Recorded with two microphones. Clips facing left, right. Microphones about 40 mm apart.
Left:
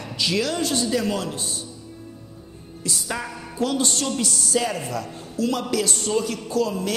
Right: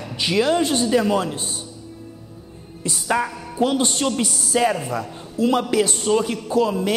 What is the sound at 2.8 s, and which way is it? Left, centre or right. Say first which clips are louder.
A man's voice: right 7 dB; right.